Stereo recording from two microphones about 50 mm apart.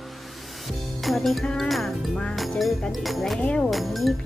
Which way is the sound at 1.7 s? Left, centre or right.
Centre.